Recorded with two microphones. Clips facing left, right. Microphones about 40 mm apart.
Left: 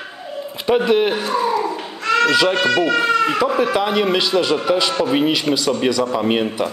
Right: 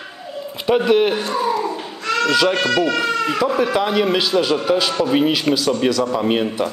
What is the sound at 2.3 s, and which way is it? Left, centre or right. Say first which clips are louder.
Speech: left 1 dB; centre.